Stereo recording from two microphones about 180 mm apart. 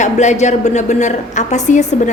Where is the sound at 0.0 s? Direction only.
40° left (ahead or behind).